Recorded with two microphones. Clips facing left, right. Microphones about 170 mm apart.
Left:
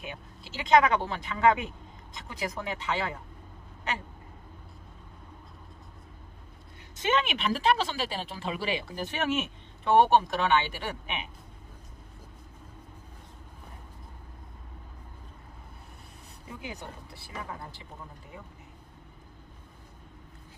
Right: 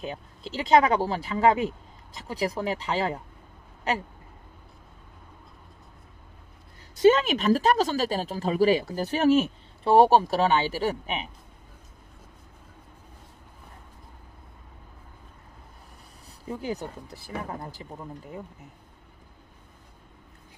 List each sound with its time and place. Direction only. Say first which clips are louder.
0.0 s speech: right 7 dB; 35° right (ahead or behind)
7.0 s speech: right 9 dB; 35° right (ahead or behind)
16.4 s speech: right 9 dB; 40° right (ahead or behind)